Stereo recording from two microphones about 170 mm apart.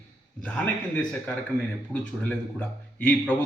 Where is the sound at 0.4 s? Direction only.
5° left (ahead or behind).